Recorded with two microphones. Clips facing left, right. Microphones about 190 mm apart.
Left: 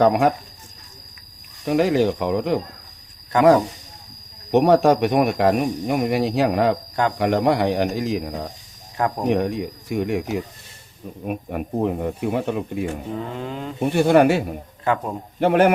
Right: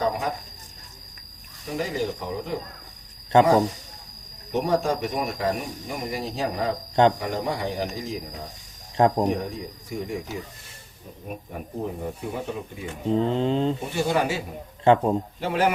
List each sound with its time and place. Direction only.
0.0 s speech: 70° left (ahead or behind)
1.6 s speech: 75° left (ahead or behind)
3.3 s speech: 25° right (ahead or behind)
4.5 s speech: 70° left (ahead or behind)
9.0 s speech: 25° right (ahead or behind)
9.3 s speech: 70° left (ahead or behind)
13.1 s speech: 25° right (ahead or behind)
13.7 s speech: 60° left (ahead or behind)
14.9 s speech: 25° right (ahead or behind)
15.4 s speech: 60° left (ahead or behind)